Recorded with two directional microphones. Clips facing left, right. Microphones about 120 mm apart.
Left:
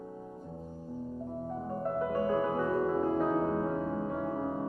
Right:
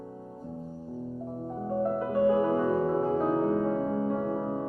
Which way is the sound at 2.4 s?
20° right (ahead or behind).